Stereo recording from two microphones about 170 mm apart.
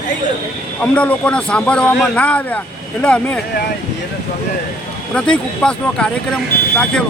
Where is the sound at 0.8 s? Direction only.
10° left (ahead or behind).